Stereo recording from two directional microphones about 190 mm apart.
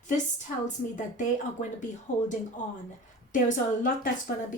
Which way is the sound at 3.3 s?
45° left (ahead or behind).